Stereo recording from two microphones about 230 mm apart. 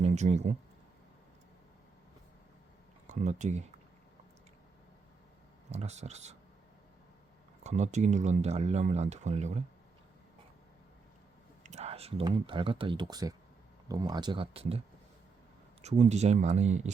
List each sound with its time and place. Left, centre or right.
0.0 s speech: right
3.1 s speech: right
5.7 s speech: right
7.6 s speech: right
11.6 s speech: right
15.8 s speech: right